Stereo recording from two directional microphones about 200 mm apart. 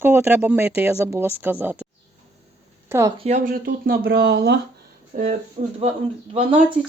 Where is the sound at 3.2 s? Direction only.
35° right (ahead or behind); by 4.5 s 55° right (ahead or behind).